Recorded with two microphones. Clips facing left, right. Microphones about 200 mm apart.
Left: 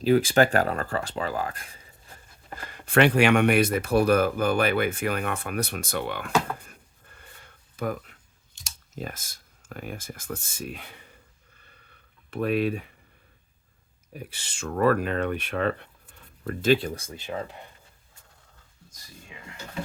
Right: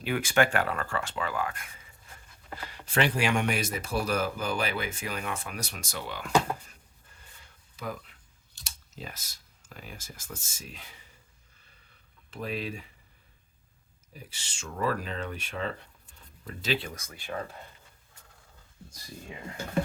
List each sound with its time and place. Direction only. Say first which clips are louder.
0.0 s speech: left 6 dB; 35° left (ahead or behind)
2.6 s speech: left 7 dB; 50° left (ahead or behind)
6.6 s a sound: left 5 dB; 60° left (ahead or behind)
8.6 s speech: left 7 dB; 50° left (ahead or behind)
12.3 s speech: left 10 dB; 60° left (ahead or behind)
14.1 s speech: left 8 dB; 60° left (ahead or behind); by 17.6 s 20° left (ahead or behind)